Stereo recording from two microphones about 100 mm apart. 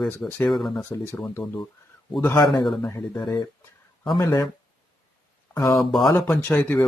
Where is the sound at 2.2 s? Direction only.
20° left (ahead or behind).